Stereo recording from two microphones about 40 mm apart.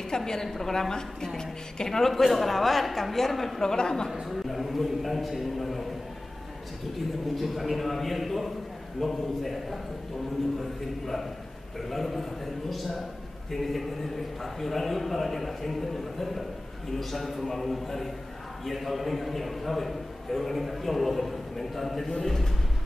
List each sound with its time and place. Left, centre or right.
0.1 s a woman's voice: centre
3.7 s a woman's voice: centre
4.1 s a man's voice: centre
7.3 s a man's voice: centre